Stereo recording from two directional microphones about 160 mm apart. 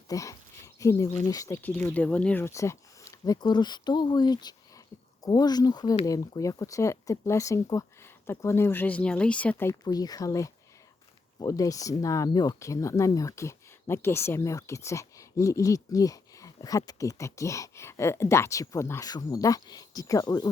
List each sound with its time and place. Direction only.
0.1 s speech: 20° left (ahead or behind)
9.8 s speech: 25° left (ahead or behind)